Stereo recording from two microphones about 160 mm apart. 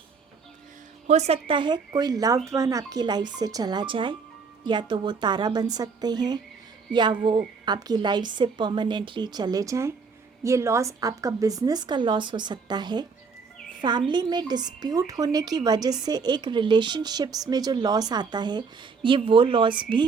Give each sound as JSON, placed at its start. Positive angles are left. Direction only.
{"t": 1.0, "sound": "speech", "side_deg": -45}
{"t": 1.5, "sound": "a woman's voice", "side_deg": -30}